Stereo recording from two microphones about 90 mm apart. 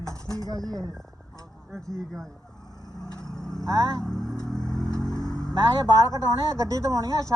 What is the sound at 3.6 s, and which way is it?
Speech, 50° right (ahead or behind).